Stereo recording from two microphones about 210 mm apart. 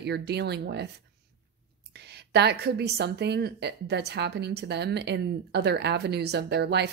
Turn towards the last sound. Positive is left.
turn(degrees=-50)  # may be behind; listen again after turning